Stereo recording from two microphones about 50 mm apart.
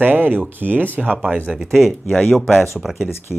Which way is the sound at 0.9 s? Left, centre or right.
Right.